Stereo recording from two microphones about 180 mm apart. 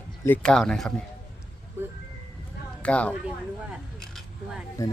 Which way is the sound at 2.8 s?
5° left (ahead or behind).